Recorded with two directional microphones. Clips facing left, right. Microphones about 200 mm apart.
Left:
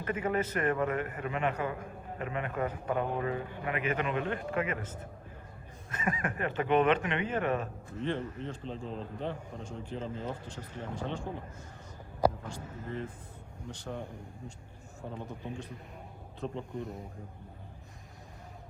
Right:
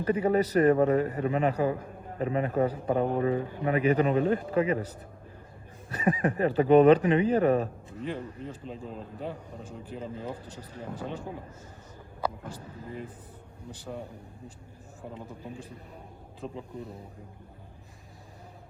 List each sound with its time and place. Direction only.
0.0 s a man's voice: 35° right (ahead or behind)
8.0 s a man's voice: 5° right (ahead or behind)
12.8 s a man's voice: 10° right (ahead or behind)
15.0 s a man's voice: 5° right (ahead or behind)
16.4 s a man's voice: 5° right (ahead or behind)